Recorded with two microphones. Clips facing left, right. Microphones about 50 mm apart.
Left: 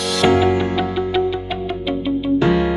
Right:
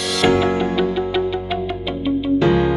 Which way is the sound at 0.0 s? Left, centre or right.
Centre.